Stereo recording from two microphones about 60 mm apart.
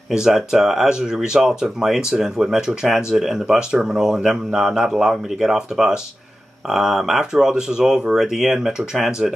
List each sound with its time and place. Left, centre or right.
0.1 s speech: centre